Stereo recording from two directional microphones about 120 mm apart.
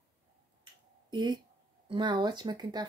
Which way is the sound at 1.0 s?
40° right (ahead or behind).